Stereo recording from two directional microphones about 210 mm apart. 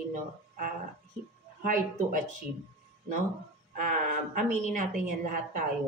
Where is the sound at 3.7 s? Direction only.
40° right (ahead or behind).